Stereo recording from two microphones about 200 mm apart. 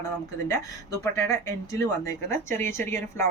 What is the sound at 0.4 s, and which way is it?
Speech, 15° left (ahead or behind).